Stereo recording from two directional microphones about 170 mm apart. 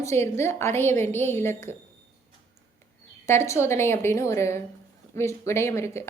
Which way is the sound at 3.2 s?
15° left (ahead or behind).